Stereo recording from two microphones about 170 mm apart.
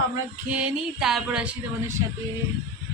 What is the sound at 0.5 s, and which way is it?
Music, 5° right (ahead or behind).